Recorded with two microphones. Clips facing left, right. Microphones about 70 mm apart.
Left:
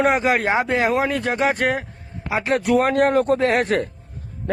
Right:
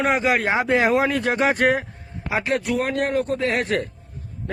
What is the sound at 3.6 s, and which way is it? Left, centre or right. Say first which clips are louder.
Speech: left 3 dB; left.